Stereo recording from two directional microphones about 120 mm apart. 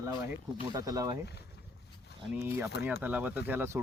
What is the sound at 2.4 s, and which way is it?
Speech, 15° right (ahead or behind).